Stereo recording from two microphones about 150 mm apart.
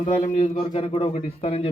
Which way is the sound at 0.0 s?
50° left (ahead or behind).